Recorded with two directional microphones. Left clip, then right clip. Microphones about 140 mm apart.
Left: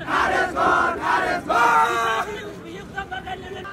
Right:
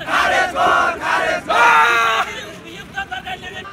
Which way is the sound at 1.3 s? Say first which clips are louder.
Right 7 dB; 25° right (ahead or behind).